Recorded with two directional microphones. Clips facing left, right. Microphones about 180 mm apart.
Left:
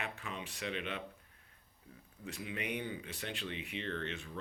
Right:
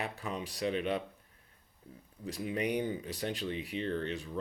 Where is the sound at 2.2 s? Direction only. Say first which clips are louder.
Right 7 dB; 40° right (ahead or behind).